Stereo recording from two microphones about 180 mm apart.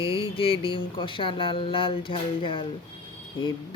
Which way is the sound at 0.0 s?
30° left (ahead or behind).